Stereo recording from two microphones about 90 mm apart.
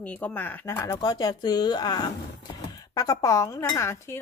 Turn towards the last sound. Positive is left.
turn(degrees=30)  # may be behind; listen again after turning